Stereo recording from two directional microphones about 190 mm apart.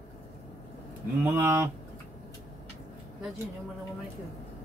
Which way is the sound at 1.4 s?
10° right (ahead or behind).